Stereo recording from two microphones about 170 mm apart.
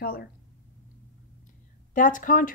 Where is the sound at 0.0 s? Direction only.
65° left (ahead or behind).